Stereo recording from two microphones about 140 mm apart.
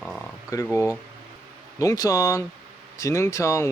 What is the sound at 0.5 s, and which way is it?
Speech, 20° left (ahead or behind).